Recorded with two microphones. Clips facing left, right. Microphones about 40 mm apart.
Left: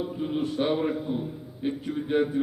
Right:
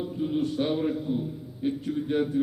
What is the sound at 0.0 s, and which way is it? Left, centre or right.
A man's voice, centre.